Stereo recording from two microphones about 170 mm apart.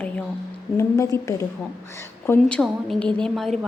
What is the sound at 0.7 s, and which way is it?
Speech, 15° left (ahead or behind).